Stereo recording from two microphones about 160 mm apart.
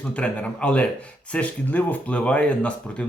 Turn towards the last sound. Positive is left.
turn(degrees=10)  # may be behind; listen again after turning